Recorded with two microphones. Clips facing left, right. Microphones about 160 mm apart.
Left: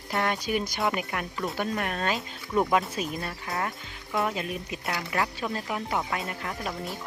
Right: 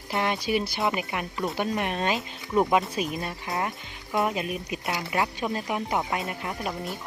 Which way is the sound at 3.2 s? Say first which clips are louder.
Right 2 dB; 20° right (ahead or behind).